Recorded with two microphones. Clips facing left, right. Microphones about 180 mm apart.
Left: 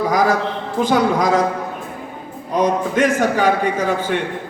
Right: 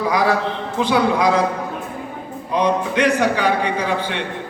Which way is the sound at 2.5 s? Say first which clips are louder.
Left 1 dB; 45° left (ahead or behind).